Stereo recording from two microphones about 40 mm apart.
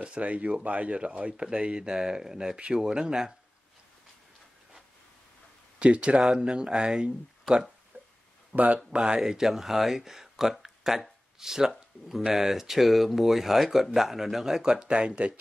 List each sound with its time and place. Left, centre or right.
0.2 s speech: right; by 3.3 s centre
5.8 s speech: right
7.9 s a sound: right
8.7 s speech: right
9.2 s speech: centre
14.7 s speech: right